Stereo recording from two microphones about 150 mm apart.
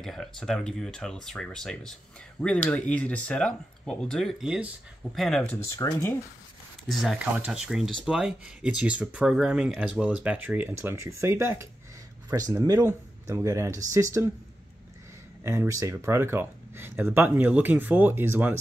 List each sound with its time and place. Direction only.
0.0 s speech: centre (ahead or behind)
5.4 s speech: 10° left (ahead or behind)
6.9 s speech: centre (ahead or behind); by 14.3 s 20° right (ahead or behind)
15.4 s speech: 20° right (ahead or behind)